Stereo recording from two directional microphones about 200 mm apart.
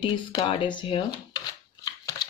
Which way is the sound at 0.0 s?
25° left (ahead or behind).